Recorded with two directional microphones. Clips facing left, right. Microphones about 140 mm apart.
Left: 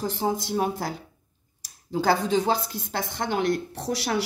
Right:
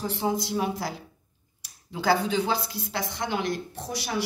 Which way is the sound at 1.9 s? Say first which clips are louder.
Left 2 dB; 40° left (ahead or behind).